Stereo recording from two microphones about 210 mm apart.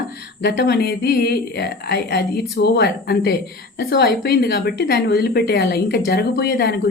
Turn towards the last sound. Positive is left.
turn(degrees=50)  # may be behind; listen again after turning